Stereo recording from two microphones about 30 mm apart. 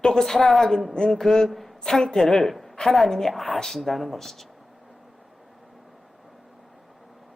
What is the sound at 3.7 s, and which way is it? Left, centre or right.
Speech, centre.